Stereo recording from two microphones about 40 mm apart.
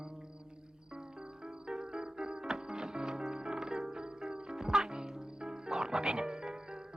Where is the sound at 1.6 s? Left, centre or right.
Right.